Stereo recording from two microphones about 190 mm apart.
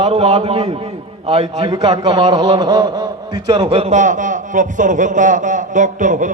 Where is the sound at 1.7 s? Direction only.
20° right (ahead or behind).